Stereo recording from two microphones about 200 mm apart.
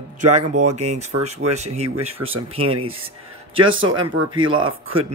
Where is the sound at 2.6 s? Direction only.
90° right.